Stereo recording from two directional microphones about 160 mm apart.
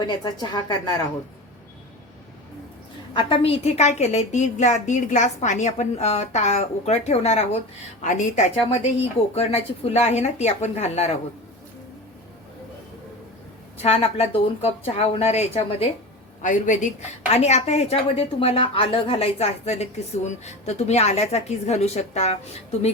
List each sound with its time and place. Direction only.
0.0 s a woman's voice: 25° left (ahead or behind)
3.1 s a woman's voice: 30° left (ahead or behind); by 8.4 s 50° left (ahead or behind)
8.7 s speech: 40° left (ahead or behind)
13.8 s speech: 40° left (ahead or behind)
16.4 s a woman's voice: 50° left (ahead or behind)